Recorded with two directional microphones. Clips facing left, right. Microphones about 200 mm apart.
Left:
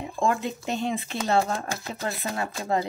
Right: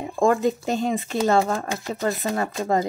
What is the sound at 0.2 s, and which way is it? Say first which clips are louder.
Speech: right 7 dB; 40° right (ahead or behind).